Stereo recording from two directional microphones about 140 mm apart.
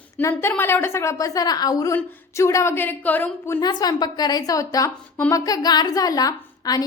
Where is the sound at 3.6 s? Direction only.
30° left (ahead or behind).